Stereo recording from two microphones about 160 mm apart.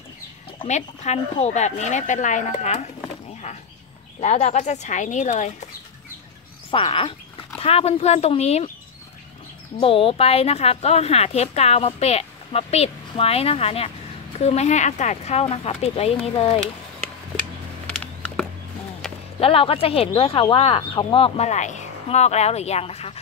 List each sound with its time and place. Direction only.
0.7 s speech: 45° left (ahead or behind)
4.2 s speech: 45° left (ahead or behind)
6.7 s speech: 35° left (ahead or behind)
9.8 s a woman's voice: 35° left (ahead or behind)
17.8 s a sound: 10° left (ahead or behind)
19.4 s a woman's voice: 35° left (ahead or behind)